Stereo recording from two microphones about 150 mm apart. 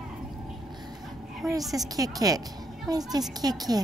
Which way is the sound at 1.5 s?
25° right (ahead or behind).